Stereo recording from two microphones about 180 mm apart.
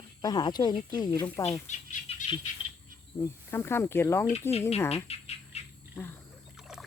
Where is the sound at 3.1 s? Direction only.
15° left (ahead or behind).